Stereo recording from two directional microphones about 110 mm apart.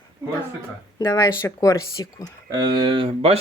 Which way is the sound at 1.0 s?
30° left (ahead or behind).